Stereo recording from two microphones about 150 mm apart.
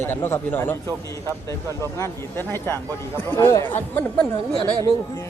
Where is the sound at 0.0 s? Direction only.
15° left (ahead or behind).